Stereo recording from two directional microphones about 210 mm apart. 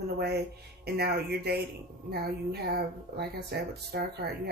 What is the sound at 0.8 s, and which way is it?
Speech, 50° right (ahead or behind).